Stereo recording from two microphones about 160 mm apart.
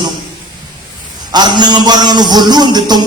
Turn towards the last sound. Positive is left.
turn(degrees=-25)  # may be behind; listen again after turning